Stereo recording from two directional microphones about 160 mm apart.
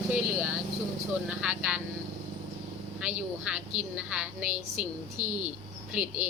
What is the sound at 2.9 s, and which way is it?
A woman's voice, 10° right (ahead or behind).